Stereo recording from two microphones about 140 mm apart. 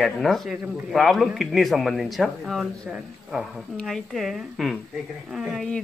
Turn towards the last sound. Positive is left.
turn(degrees=-5)  # may be behind; listen again after turning